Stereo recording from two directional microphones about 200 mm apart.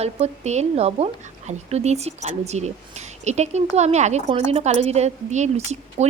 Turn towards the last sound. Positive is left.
turn(degrees=-35)  # may be behind; listen again after turning